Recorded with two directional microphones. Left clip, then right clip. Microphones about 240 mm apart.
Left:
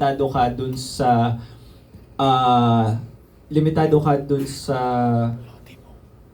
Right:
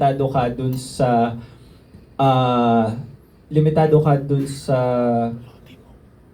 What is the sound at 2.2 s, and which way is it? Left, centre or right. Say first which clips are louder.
Speech: left 1 dB; centre.